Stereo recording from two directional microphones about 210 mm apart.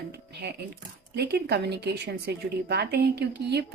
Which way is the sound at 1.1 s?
50° right (ahead or behind).